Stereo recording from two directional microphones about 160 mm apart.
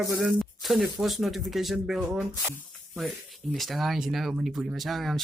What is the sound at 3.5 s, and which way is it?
Speech, centre (ahead or behind).